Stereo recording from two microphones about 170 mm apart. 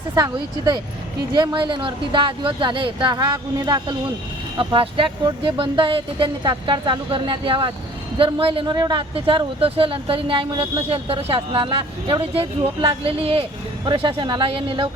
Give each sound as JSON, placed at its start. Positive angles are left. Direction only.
{"t": 0.1, "sound": "speech", "side_deg": -20}